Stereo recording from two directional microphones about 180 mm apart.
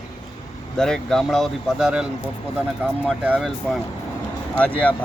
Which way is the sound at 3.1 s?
5° right (ahead or behind).